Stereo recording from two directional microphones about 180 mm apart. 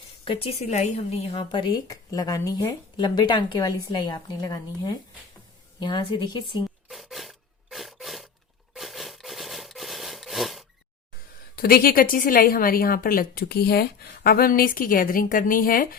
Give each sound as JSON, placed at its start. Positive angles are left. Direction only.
{"t": 0.3, "sound": "speech", "side_deg": 35}
{"t": 6.8, "sound": "filing", "side_deg": 0}
{"t": 8.7, "sound": "sawing", "side_deg": 0}
{"t": 11.5, "sound": "a woman's voice", "side_deg": 55}